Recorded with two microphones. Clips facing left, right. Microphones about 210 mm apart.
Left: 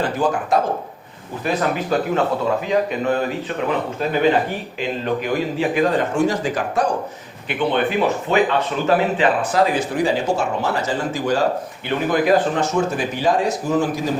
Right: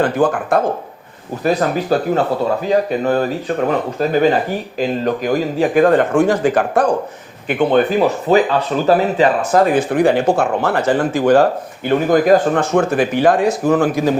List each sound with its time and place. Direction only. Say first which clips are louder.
0.0 s speech: right 5 dB; 50° right (ahead or behind)
1.5 s speech: right 5 dB; 35° right (ahead or behind); by 6.8 s 55° right (ahead or behind)
7.4 s speech: right 6 dB; 45° right (ahead or behind)
11.9 s speech: right 5 dB; 45° right (ahead or behind)
12.7 s speech: right 6 dB; 60° right (ahead or behind)